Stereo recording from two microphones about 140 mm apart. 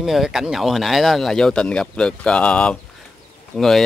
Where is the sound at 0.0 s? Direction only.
Centre (ahead or behind).